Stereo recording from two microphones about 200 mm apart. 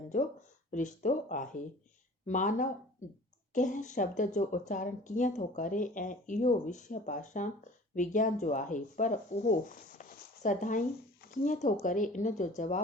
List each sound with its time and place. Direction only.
0.7 s a woman's voice: 40° left (ahead or behind)